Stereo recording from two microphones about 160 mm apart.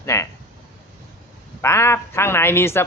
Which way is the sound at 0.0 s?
20° left (ahead or behind).